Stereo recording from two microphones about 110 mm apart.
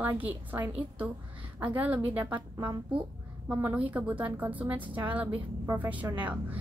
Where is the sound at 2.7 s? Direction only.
50° right (ahead or behind).